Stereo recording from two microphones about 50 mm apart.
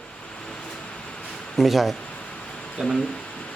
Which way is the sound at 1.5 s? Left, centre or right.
Centre.